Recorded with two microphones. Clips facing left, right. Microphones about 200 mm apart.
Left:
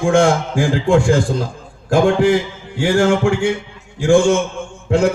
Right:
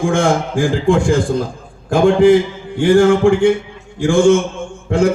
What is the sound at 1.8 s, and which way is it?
A man's voice, 55° right (ahead or behind).